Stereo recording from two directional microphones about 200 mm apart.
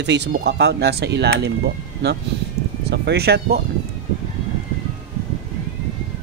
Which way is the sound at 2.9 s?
55° right (ahead or behind).